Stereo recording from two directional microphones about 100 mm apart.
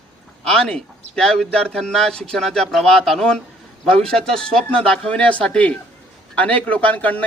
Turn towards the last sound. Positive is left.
turn(degrees=15)  # may be behind; listen again after turning